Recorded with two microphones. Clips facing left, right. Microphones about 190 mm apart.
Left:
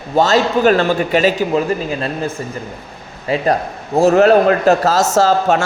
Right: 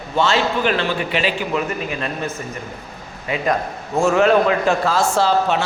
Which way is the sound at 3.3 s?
35° left (ahead or behind).